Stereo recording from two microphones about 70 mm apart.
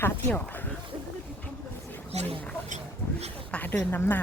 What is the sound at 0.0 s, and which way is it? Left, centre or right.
Speech, left.